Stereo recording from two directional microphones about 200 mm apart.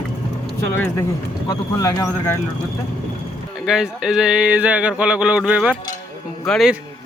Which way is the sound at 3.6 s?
5° right (ahead or behind).